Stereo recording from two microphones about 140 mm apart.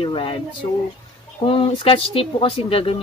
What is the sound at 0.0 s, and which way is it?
Speech, 40° left (ahead or behind).